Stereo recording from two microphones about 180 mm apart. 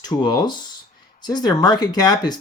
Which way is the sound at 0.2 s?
25° left (ahead or behind).